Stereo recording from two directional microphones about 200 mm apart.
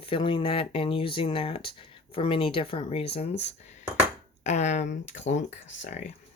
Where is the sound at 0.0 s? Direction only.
25° left (ahead or behind).